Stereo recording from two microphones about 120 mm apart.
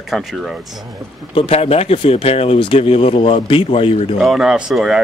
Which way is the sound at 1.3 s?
50° left (ahead or behind).